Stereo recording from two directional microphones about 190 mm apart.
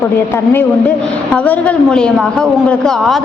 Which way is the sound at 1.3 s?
10° left (ahead or behind).